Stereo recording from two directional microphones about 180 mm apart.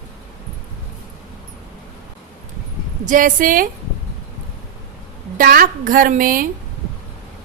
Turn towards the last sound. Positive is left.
turn(degrees=-50)  # may be behind; listen again after turning